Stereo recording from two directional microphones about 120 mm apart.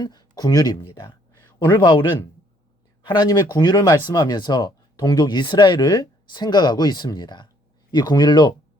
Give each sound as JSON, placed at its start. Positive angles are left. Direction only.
{"t": 0.0, "sound": "speech", "side_deg": 35}